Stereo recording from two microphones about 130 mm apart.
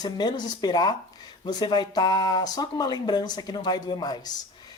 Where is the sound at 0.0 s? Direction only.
30° left (ahead or behind).